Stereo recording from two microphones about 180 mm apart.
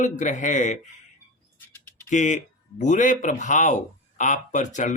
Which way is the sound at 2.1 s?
45° left (ahead or behind).